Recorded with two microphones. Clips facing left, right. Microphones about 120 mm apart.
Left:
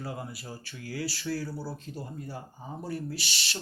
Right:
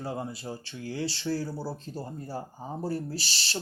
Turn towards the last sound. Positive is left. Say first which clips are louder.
# right 1 dB
turn(degrees=-30)  # may be behind; listen again after turning